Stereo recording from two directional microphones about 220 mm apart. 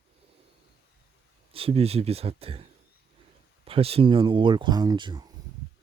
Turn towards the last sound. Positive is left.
turn(degrees=-20)  # may be behind; listen again after turning